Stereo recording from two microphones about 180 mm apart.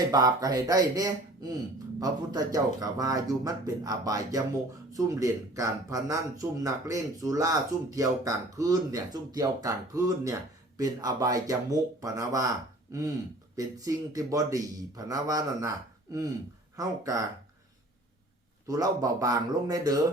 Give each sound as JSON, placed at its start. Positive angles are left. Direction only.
{"t": 0.1, "sound": "a man's voice", "side_deg": -20}
{"t": 16.7, "sound": "a man's voice", "side_deg": -20}
{"t": 18.7, "sound": "a man's voice", "side_deg": -20}